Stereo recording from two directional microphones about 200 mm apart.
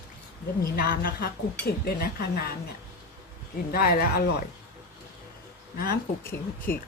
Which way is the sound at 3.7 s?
50° left (ahead or behind).